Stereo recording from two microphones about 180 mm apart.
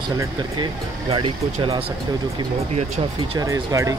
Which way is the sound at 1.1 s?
30° right (ahead or behind).